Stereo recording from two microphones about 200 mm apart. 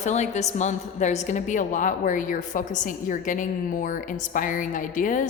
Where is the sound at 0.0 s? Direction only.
35° left (ahead or behind).